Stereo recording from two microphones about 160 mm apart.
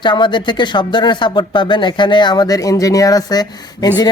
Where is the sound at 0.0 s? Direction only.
30° left (ahead or behind).